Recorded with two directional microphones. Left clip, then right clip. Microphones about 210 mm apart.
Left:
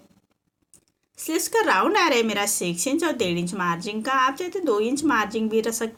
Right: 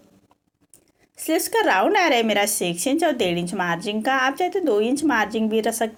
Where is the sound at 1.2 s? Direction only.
15° right (ahead or behind).